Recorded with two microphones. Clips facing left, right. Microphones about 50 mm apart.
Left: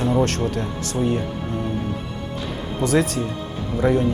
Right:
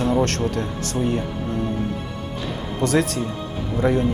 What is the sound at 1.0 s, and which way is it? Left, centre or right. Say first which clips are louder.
Speech: left 1 dB; centre.